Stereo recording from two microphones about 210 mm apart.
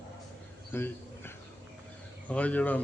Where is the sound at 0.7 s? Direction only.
10° left (ahead or behind).